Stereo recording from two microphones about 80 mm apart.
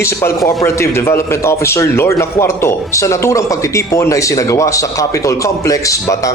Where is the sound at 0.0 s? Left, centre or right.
Left.